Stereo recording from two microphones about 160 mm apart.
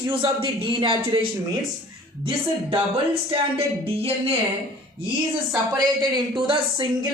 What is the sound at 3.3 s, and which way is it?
Speech, 35° right (ahead or behind).